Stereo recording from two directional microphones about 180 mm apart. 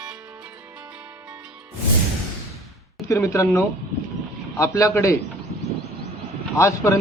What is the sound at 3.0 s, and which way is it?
A man's voice, 15° left (ahead or behind).